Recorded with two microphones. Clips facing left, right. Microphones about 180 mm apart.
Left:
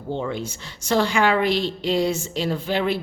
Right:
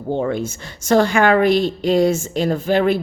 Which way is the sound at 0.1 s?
50° right (ahead or behind).